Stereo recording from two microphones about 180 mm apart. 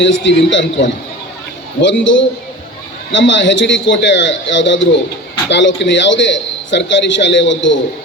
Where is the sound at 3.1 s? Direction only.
90° left.